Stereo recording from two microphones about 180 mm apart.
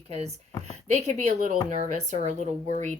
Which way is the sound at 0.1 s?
35° right (ahead or behind).